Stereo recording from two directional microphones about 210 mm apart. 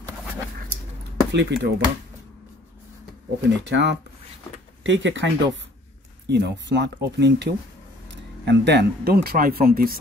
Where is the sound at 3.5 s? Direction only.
55° right (ahead or behind).